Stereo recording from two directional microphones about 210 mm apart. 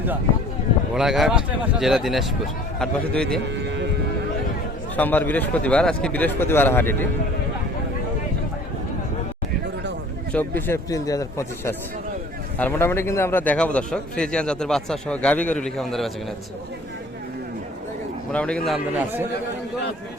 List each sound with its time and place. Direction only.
0.9 s a man's voice: centre (ahead or behind)
3.6 s a sound: 60° right (ahead or behind)
4.9 s a man's voice: 10° left (ahead or behind)
10.3 s a man's voice: 10° left (ahead or behind)
18.3 s a man's voice: 5° left (ahead or behind)